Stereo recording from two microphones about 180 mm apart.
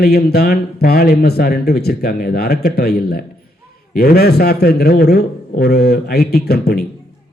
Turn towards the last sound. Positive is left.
turn(degrees=60)  # may be behind; listen again after turning